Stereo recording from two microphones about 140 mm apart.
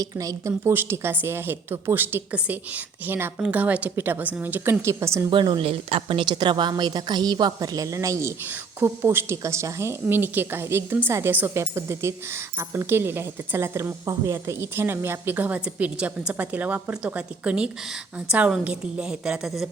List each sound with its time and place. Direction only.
0.0 s a woman's voice: 25° right (ahead or behind)
5.3 s a woman's voice: 35° right (ahead or behind); by 19.6 s 5° right (ahead or behind)